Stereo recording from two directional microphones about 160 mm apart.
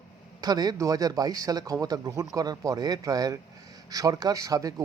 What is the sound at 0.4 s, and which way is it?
Speech, 25° right (ahead or behind).